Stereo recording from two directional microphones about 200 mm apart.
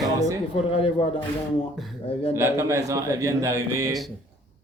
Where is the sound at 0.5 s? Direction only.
30° left (ahead or behind).